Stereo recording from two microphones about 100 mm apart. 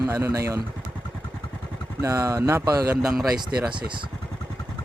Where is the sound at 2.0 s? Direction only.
30° right (ahead or behind).